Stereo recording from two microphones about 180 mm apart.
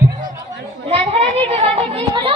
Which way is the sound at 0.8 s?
30° right (ahead or behind).